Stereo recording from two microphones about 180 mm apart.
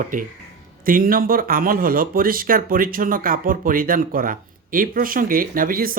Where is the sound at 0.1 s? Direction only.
50° right (ahead or behind).